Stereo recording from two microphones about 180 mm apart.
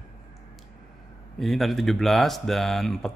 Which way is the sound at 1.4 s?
Centre (ahead or behind).